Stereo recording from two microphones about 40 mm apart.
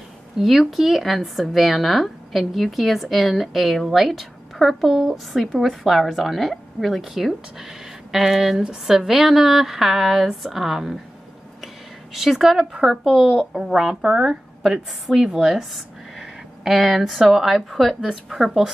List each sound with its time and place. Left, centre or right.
0.4 s a woman's voice: centre